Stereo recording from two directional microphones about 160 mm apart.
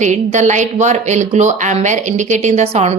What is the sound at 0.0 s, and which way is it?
Speech, 50° right (ahead or behind).